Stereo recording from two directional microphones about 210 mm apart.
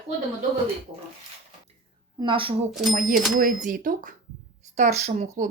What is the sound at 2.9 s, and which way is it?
Speech, 40° right (ahead or behind).